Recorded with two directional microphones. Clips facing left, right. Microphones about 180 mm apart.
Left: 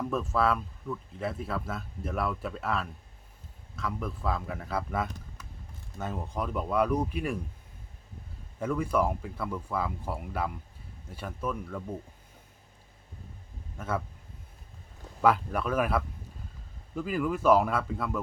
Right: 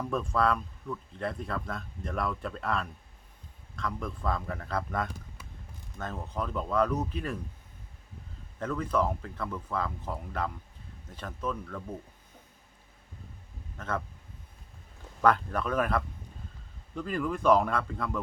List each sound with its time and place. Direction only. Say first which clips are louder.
0.1 s speech: right 1 dB; 5° left (ahead or behind)
8.5 s speech: left 2 dB; 10° left (ahead or behind)
13.7 s speech: left 2 dB; 10° left (ahead or behind)
15.2 s speech: even; 5° left (ahead or behind)